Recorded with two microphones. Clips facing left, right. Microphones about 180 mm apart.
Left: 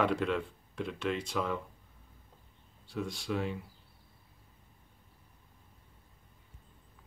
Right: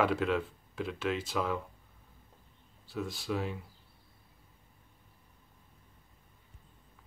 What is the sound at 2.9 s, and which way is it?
Speech, centre (ahead or behind).